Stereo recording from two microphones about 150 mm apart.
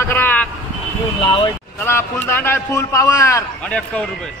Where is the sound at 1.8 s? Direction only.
15° left (ahead or behind).